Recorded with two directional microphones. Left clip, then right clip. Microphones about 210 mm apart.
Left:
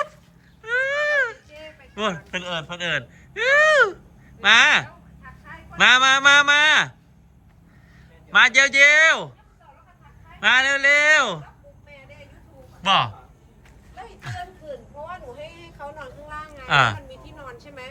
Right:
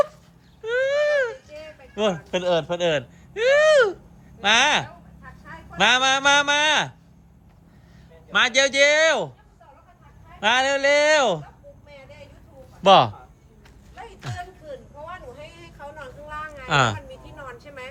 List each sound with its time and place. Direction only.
0.6 s baby cry: 15° right (ahead or behind)
2.0 s a man's voice: 15° right (ahead or behind)
5.2 s a sound: 50° right (ahead or behind)
5.7 s a man's voice: 10° right (ahead or behind)
8.3 s a man's voice: 10° right (ahead or behind)
10.4 s a man's voice: 15° right (ahead or behind)
12.8 s speech: 25° right (ahead or behind)
16.0 s vehicle: 10° left (ahead or behind)
16.6 s a man's voice: 15° right (ahead or behind)
17.1 s a sound: centre (ahead or behind)